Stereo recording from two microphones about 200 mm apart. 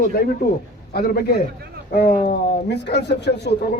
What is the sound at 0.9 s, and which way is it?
A man's voice, 50° left (ahead or behind).